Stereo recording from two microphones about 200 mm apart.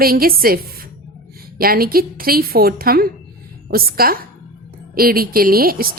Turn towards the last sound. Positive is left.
turn(degrees=-45)  # may be behind; listen again after turning